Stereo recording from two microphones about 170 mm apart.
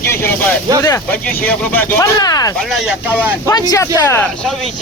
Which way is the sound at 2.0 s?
20° left (ahead or behind).